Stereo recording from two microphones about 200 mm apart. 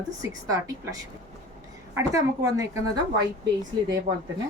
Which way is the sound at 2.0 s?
15° right (ahead or behind).